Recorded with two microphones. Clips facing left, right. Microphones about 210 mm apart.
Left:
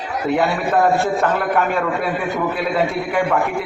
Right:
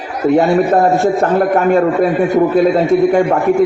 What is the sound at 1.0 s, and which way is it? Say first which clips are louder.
Speech: right 7 dB; 40° right (ahead or behind).